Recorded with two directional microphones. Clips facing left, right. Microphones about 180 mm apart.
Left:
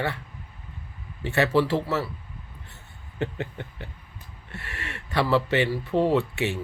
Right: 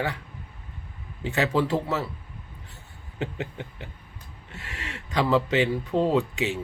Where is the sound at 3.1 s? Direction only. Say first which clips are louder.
Left 1 dB; 15° right (ahead or behind).